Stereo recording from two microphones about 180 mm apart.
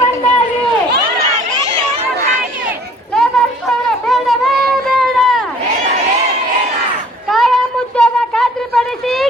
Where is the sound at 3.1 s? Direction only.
Centre (ahead or behind).